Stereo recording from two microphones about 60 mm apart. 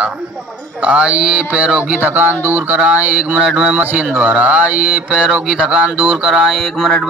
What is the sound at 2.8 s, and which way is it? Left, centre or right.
Mantra, centre.